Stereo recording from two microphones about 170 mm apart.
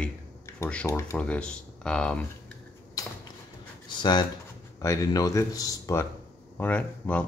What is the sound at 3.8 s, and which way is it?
Speech, 25° left (ahead or behind).